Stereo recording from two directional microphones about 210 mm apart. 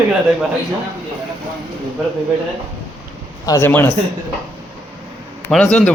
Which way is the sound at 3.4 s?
15° left (ahead or behind).